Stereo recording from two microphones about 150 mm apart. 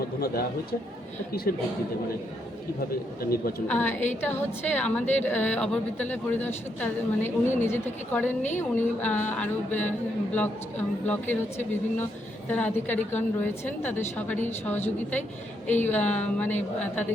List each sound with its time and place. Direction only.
0.2 s speech: 90° left
1.5 s speech: 75° left (ahead or behind)
3.2 s a woman's voice: 85° left
3.7 s speech: 10° left (ahead or behind)
15.6 s speech: 10° left (ahead or behind)